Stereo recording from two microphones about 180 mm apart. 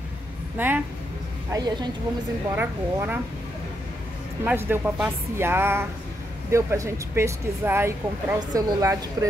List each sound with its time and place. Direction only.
0.6 s speech: 10° right (ahead or behind)
1.5 s a woman's voice: 25° right (ahead or behind)
2.5 s speech: 10° right (ahead or behind)
4.5 s a woman's voice: 10° right (ahead or behind)